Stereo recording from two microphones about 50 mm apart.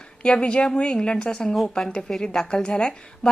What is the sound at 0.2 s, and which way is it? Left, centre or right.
A woman's voice, centre.